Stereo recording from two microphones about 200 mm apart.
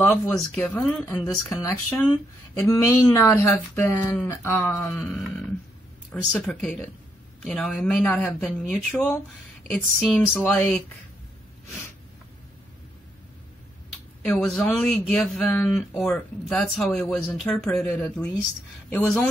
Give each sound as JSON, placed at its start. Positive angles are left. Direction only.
{"t": 0.0, "sound": "speech", "side_deg": 5}
{"t": 0.6, "sound": "a sound", "side_deg": 5}
{"t": 5.0, "sound": "speech", "side_deg": 0}
{"t": 14.2, "sound": "speech", "side_deg": 5}